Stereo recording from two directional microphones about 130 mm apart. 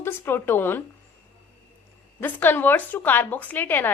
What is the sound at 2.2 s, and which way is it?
A woman's voice, 15° left (ahead or behind).